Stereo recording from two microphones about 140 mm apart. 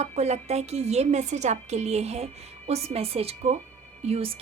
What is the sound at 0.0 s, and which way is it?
A woman's voice, 50° right (ahead or behind).